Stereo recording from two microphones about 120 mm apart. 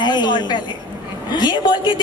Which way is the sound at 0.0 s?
35° left (ahead or behind).